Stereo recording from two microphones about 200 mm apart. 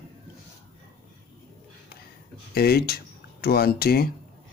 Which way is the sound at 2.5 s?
50° left (ahead or behind).